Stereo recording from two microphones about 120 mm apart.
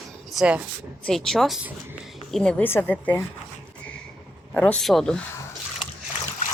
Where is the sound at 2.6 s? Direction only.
15° left (ahead or behind).